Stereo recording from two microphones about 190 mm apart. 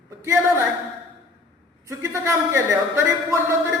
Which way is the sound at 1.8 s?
15° right (ahead or behind).